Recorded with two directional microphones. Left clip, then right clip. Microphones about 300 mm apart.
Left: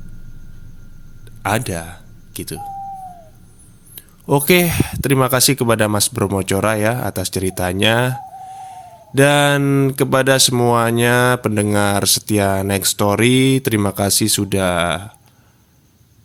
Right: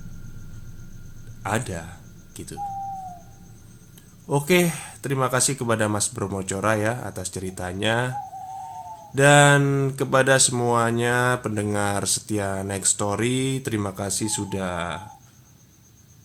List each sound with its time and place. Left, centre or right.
1.4 s speech: left
3.9 s speech: left
9.1 s speech: left